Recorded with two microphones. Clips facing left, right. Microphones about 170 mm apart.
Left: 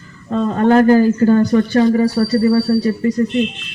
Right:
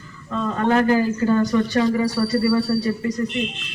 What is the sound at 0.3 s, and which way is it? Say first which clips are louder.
Speech: left 7 dB; 45° left (ahead or behind).